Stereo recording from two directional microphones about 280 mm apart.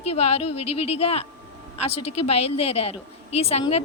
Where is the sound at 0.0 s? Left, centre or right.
Left.